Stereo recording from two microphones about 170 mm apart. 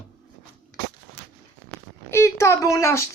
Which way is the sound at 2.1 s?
15° left (ahead or behind).